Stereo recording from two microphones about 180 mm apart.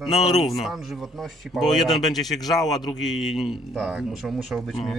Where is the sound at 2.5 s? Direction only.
20° left (ahead or behind).